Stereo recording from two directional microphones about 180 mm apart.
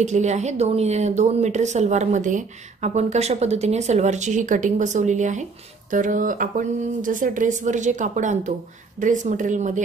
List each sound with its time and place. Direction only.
0.0 s speech: 40° right (ahead or behind)